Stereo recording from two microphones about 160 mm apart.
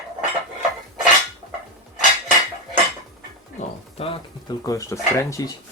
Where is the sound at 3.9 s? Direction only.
35° left (ahead or behind).